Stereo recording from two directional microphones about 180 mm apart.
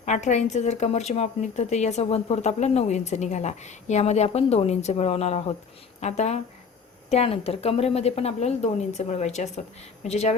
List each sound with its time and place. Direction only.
0.0 s speech: 40° left (ahead or behind)